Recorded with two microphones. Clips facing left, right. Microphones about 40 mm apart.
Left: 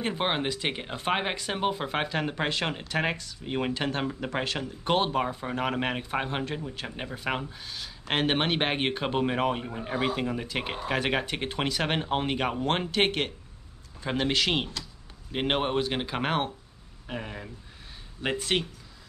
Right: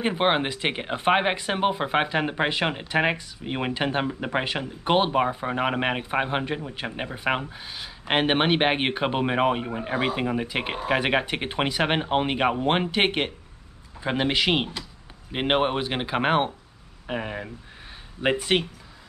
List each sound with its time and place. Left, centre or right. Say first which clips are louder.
0.0 s speech: right 5 dB; right